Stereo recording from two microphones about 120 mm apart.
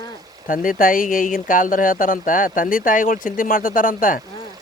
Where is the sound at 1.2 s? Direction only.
90° left.